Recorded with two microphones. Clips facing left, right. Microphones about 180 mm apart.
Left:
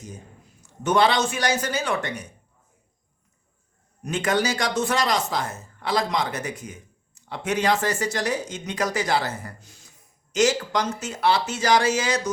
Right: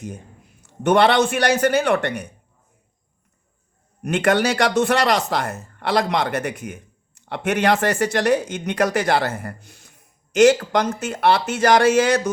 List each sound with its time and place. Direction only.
0.6 s speech: 60° right (ahead or behind)
4.0 s speech: 65° right (ahead or behind)